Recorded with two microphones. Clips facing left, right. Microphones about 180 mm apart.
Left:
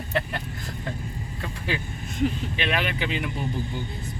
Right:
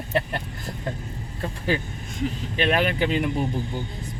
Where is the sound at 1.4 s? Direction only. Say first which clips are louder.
Right 5 dB; 40° right (ahead or behind).